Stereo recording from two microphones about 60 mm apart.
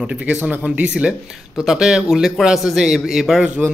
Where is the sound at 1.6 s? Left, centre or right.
Centre.